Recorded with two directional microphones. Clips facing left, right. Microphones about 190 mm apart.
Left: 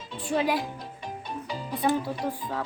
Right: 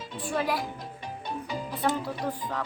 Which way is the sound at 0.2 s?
25° left (ahead or behind).